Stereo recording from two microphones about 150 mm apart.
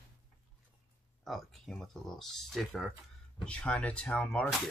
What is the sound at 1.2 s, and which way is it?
Speech, 5° left (ahead or behind).